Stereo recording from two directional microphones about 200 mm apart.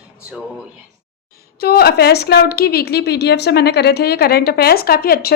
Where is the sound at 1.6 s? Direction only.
50° left (ahead or behind).